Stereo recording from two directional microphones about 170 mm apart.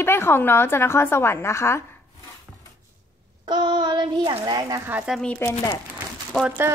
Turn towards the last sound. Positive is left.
turn(degrees=-10)  # may be behind; listen again after turning